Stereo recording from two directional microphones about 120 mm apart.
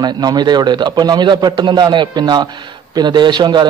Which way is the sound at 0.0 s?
35° right (ahead or behind).